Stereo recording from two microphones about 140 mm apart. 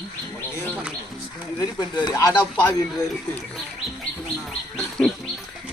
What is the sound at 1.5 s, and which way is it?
Speech, 30° left (ahead or behind).